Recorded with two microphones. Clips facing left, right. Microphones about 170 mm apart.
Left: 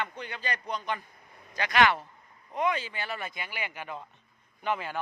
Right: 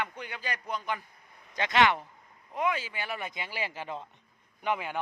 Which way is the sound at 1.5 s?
20° right (ahead or behind).